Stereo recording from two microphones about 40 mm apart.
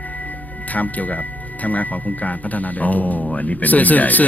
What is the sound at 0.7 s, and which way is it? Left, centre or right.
Speech, left.